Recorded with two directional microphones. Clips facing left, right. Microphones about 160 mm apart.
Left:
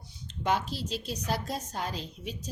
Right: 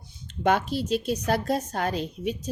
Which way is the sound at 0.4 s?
60° right (ahead or behind).